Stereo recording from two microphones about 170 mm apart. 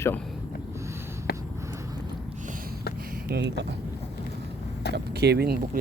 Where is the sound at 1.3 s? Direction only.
65° left (ahead or behind).